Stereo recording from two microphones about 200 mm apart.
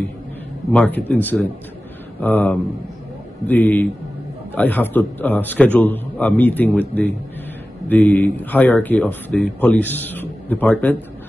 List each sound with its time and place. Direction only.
0.7 s speech: 5° left (ahead or behind)